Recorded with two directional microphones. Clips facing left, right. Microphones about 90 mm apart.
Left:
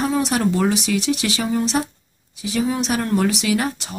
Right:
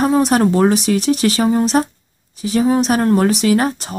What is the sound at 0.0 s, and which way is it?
Speech, 45° right (ahead or behind).